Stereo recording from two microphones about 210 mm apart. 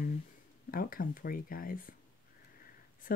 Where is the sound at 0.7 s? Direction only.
45° left (ahead or behind).